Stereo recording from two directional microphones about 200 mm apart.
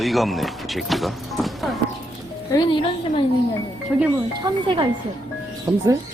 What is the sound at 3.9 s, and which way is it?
Speech, centre (ahead or behind).